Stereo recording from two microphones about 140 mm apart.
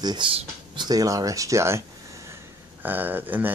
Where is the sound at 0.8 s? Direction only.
25° right (ahead or behind).